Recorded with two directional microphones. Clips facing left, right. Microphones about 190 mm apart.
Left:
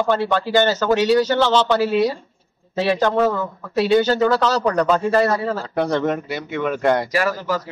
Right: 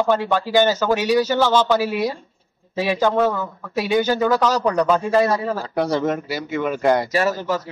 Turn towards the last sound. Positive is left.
turn(degrees=-25)  # may be behind; listen again after turning